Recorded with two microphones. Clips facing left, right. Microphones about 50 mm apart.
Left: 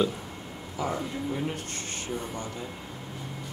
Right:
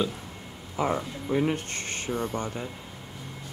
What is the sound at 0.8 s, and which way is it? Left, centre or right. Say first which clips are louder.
Speech: right 3 dB; right.